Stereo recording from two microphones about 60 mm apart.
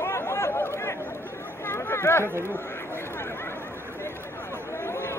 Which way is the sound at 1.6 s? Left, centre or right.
Left.